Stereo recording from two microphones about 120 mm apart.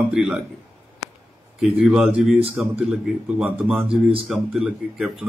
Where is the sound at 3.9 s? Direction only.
50° right (ahead or behind).